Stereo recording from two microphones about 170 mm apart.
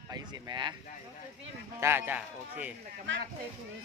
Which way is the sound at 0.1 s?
25° right (ahead or behind).